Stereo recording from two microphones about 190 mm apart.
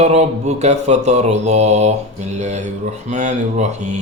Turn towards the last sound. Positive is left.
turn(degrees=-35)  # may be behind; listen again after turning